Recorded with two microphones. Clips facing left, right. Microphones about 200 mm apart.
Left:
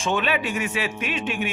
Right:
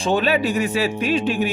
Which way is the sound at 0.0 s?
35° right (ahead or behind).